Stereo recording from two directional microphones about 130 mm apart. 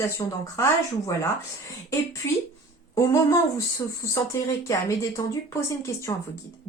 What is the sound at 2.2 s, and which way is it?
Speech, 20° left (ahead or behind).